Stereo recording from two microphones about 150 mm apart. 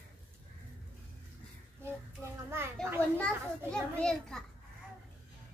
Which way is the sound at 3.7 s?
5° left (ahead or behind).